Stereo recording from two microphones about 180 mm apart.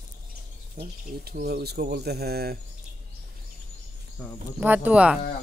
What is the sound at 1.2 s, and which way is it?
Speech, 60° right (ahead or behind).